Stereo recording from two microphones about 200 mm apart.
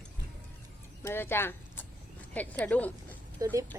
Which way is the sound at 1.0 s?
10° left (ahead or behind).